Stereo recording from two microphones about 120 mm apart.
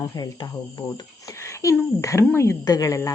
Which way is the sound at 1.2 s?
25° left (ahead or behind).